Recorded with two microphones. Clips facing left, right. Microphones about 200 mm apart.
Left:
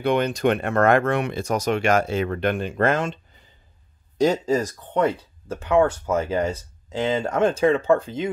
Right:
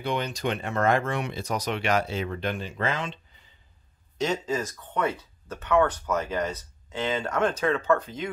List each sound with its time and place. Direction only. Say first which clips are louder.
0.0 s speech: left 8 dB; 55° left (ahead or behind)
4.2 s speech: left 7 dB; 35° left (ahead or behind)